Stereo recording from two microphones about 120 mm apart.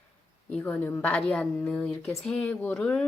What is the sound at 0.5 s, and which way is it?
A woman's voice, 10° left (ahead or behind).